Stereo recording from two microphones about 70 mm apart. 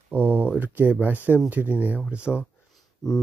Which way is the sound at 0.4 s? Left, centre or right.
Right.